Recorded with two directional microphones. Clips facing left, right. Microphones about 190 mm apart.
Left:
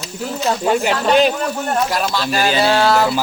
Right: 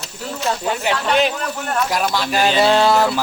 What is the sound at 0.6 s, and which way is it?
Speech, 40° left (ahead or behind).